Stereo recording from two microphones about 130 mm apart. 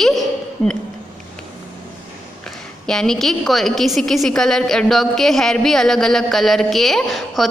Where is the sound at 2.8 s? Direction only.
5° left (ahead or behind).